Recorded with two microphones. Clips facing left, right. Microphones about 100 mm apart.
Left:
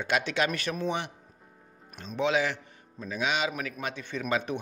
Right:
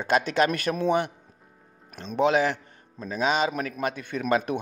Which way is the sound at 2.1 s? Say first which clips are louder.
Right 5 dB; 45° right (ahead or behind).